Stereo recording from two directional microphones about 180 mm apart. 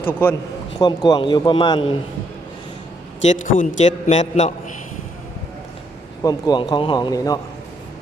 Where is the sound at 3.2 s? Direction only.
40° left (ahead or behind).